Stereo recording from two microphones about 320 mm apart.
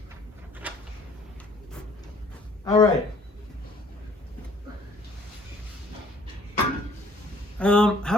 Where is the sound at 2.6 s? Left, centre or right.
Centre.